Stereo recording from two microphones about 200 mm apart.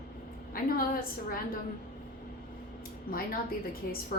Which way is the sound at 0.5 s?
45° left (ahead or behind).